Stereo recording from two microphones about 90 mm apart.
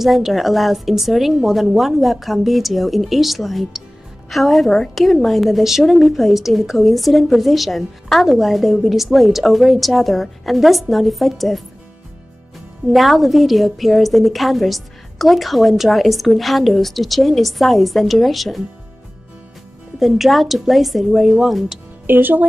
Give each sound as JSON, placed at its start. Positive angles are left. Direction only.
{"t": 0.0, "sound": "a woman's voice", "side_deg": -5}
{"t": 12.9, "sound": "a woman's voice", "side_deg": 0}
{"t": 20.0, "sound": "a woman's voice", "side_deg": 0}
{"t": 22.0, "sound": "speech", "side_deg": -20}